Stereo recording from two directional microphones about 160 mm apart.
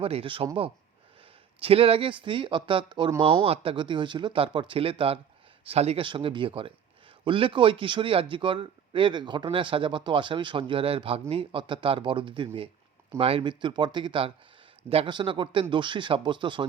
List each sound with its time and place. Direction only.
0.0 s a man's voice: 35° right (ahead or behind)
1.5 s a man's voice: 35° right (ahead or behind)